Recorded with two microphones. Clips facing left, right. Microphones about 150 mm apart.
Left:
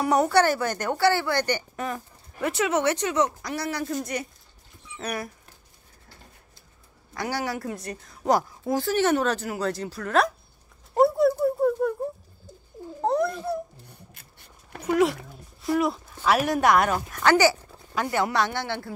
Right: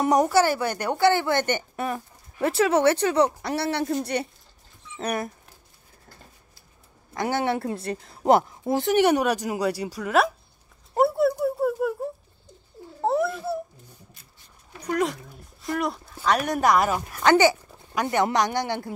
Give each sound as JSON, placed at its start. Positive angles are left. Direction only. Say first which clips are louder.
{"t": 0.2, "sound": "a woman's voice", "louder": "even", "side_deg": -10}
{"t": 2.4, "sound": "speech", "louder": "right 4 dB", "side_deg": -30}
{"t": 7.2, "sound": "a woman's voice", "louder": "right 4 dB", "side_deg": -25}
{"t": 11.0, "sound": "a sound", "louder": "left 1 dB", "side_deg": 0}
{"t": 13.0, "sound": "babbling", "louder": "even", "side_deg": -5}
{"t": 14.9, "sound": "speech", "louder": "left 4 dB", "side_deg": 5}
{"t": 17.2, "sound": "a woman's voice", "louder": "right 2 dB", "side_deg": -20}